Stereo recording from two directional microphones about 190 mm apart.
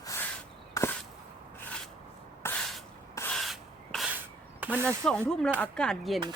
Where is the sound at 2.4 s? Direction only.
5° left (ahead or behind).